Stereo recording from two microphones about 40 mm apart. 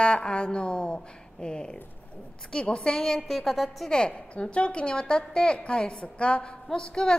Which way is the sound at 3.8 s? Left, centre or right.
Left.